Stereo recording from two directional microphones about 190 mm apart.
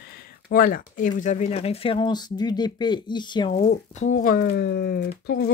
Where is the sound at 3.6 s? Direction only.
40° left (ahead or behind); by 5.5 s 55° left (ahead or behind).